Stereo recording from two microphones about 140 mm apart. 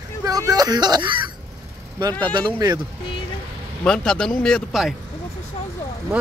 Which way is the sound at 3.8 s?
5° left (ahead or behind).